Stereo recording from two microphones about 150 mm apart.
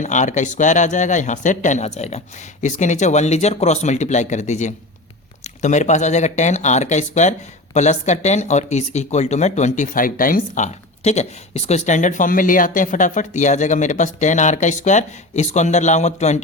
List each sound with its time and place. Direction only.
0.0 s speech: 55° left (ahead or behind)